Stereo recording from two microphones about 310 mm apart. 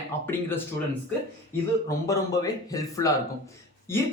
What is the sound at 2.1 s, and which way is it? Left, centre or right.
Speech, centre.